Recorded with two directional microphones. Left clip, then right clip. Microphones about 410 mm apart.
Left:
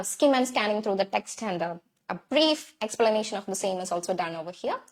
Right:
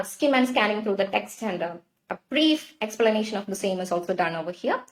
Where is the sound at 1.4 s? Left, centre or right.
Left.